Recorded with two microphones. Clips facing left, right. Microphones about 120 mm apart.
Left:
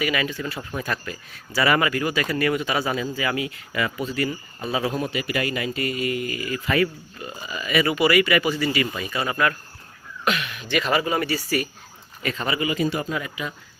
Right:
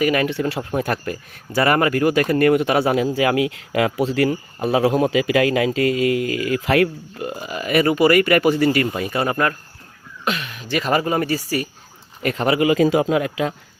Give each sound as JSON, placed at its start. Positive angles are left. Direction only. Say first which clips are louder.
{"t": 0.0, "sound": "speech", "louder": "right 6 dB", "side_deg": -50}
{"t": 0.3, "sound": "speech", "louder": "right 8 dB", "side_deg": -75}
{"t": 0.7, "sound": "speech", "louder": "right 7 dB", "side_deg": -55}
{"t": 10.2, "sound": "speech", "louder": "even", "side_deg": -35}
{"t": 12.2, "sound": "speech", "louder": "right 8 dB", "side_deg": -60}